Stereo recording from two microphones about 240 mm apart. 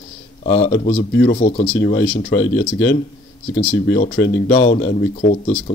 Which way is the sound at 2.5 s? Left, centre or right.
Left.